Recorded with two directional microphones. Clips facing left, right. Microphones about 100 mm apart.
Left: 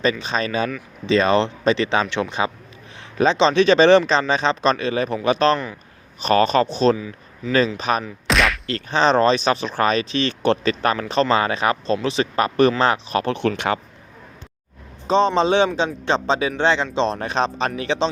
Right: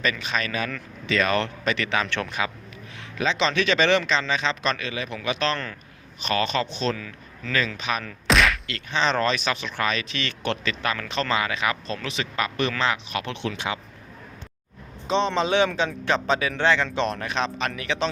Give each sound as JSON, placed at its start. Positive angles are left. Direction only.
{"t": 0.0, "sound": "a man's voice", "side_deg": 30}
{"t": 6.9, "sound": "speech", "side_deg": 15}
{"t": 7.8, "sound": "speech", "side_deg": 40}
{"t": 8.3, "sound": "a sound", "side_deg": 0}
{"t": 8.6, "sound": "speech", "side_deg": 35}
{"t": 15.0, "sound": "a man's voice", "side_deg": 35}